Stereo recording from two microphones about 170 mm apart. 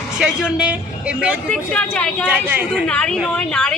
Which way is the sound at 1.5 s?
5° left (ahead or behind).